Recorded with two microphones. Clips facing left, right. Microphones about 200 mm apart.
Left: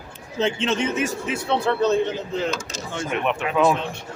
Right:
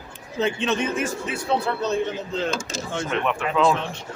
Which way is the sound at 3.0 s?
15° left (ahead or behind).